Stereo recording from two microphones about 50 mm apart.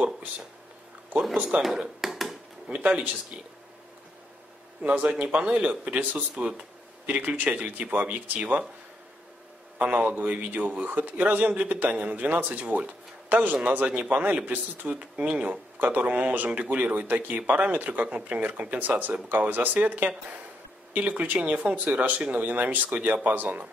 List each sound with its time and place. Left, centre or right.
1.5 s a man's voice: right
2.0 s a sound: centre
2.7 s speech: right
4.8 s speech: right
7.1 s a man's voice: right
9.8 s a man's voice: right
21.7 s a man's voice: right